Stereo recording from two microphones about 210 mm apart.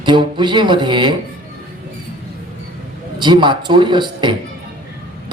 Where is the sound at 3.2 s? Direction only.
20° right (ahead or behind).